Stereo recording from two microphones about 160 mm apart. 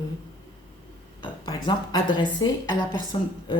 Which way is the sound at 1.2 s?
30° left (ahead or behind).